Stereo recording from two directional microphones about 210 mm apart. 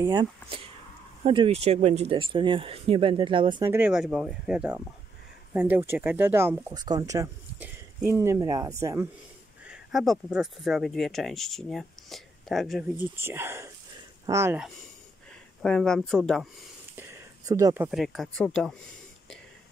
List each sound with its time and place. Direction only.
0.0 s speech: 20° right (ahead or behind)
3.7 s speech: 5° right (ahead or behind)
9.7 s speech: centre (ahead or behind)
15.6 s speech: 5° left (ahead or behind)
16.9 s a sound: 15° right (ahead or behind)
17.8 s speech: centre (ahead or behind)